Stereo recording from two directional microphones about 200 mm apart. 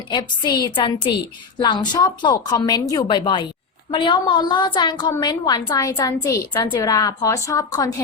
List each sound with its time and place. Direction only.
0.1 s a woman's voice: 20° left (ahead or behind)